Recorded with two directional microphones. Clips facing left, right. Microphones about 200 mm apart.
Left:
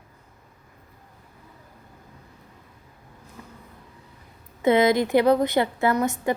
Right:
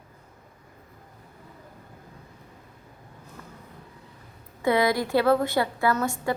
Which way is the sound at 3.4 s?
15° left (ahead or behind).